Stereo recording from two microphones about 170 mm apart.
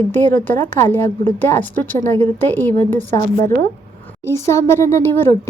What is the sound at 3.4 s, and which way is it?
Speech, 55° right (ahead or behind).